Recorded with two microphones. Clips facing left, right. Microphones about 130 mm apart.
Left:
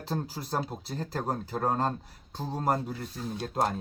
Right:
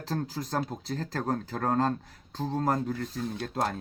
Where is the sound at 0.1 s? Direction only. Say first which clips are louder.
Right 1 dB; 10° left (ahead or behind).